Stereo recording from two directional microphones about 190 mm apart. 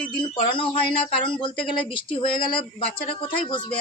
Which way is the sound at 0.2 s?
25° left (ahead or behind).